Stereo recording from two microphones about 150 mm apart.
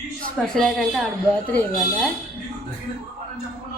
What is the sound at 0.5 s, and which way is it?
Speech, 5° left (ahead or behind).